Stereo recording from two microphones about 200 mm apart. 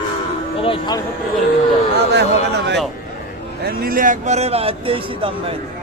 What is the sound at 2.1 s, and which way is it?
Speech, 60° right (ahead or behind).